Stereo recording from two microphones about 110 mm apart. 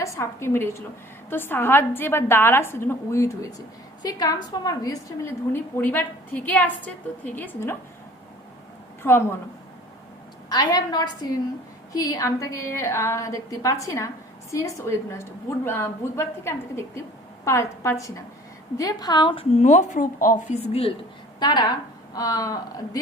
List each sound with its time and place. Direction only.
0.0 s a woman's voice: 25° left (ahead or behind)
5.8 s a woman's voice: 15° left (ahead or behind)
9.0 s a woman's voice: 20° left (ahead or behind)
10.5 s a woman's voice: 40° left (ahead or behind)
19.5 s speech: 90° left
21.3 s a woman's voice: 40° left (ahead or behind)